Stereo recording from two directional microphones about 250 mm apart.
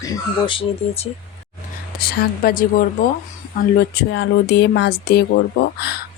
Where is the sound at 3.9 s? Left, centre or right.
Left.